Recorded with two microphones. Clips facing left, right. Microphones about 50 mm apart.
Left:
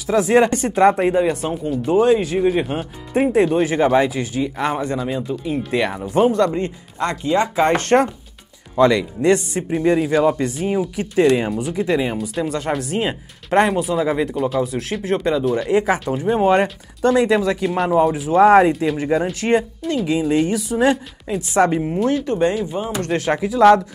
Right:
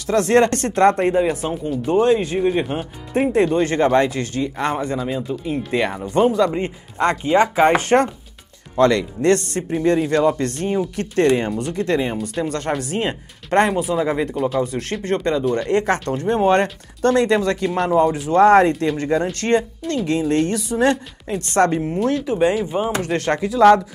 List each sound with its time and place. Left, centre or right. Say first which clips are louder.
0.0 s speech: even; centre
6.5 s speech: left 1 dB; right
7.5 s speech: right 2 dB; centre
8.7 s speech: left 1 dB; centre
22.7 s speech: right 3 dB; right
23.0 s speech: left 1 dB; centre